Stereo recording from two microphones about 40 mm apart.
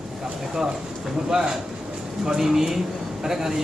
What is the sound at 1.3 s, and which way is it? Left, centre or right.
Speech, centre.